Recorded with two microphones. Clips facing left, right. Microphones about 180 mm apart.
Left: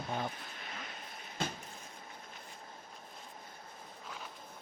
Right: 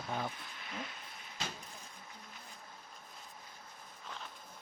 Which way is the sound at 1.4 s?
55° left (ahead or behind).